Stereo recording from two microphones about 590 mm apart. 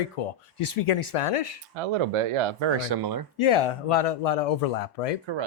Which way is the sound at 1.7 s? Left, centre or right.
Right.